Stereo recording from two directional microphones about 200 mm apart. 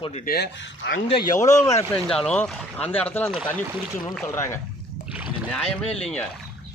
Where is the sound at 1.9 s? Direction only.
Centre (ahead or behind).